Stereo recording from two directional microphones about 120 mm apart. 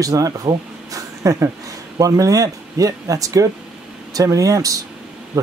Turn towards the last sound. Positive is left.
turn(degrees=-30)  # may be behind; listen again after turning